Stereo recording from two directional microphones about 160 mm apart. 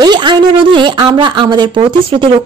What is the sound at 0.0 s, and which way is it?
Speech, 30° right (ahead or behind).